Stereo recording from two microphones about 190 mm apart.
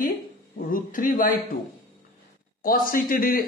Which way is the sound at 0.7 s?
45° left (ahead or behind).